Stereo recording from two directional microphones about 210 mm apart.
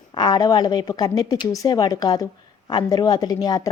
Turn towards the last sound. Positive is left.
turn(degrees=15)  # may be behind; listen again after turning